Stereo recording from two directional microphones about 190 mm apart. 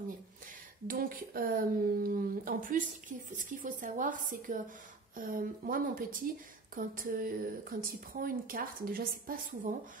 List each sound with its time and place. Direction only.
0.8 s speech: 50° right (ahead or behind)